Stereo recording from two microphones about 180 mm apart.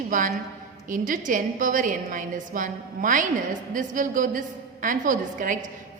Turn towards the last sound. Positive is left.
turn(degrees=-45)  # may be behind; listen again after turning